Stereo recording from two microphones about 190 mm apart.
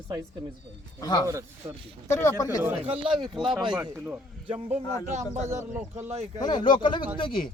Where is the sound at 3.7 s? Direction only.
5° right (ahead or behind).